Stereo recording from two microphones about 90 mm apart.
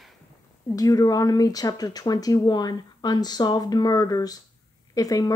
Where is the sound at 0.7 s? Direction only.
45° left (ahead or behind).